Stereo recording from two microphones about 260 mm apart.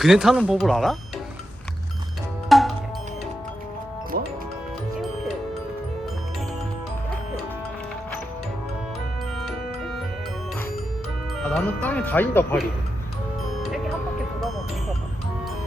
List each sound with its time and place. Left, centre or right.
0.0 s speech: centre
2.5 s music: centre
4.1 s music: right
9.4 s music: centre
11.3 s speech: centre
13.6 s music: centre